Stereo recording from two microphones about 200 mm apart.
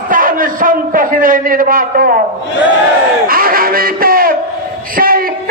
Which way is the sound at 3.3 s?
45° right (ahead or behind).